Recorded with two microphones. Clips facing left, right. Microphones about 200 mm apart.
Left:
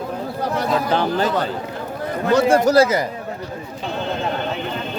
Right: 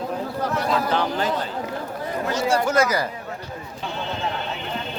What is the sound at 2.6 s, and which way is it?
Speech, 35° left (ahead or behind).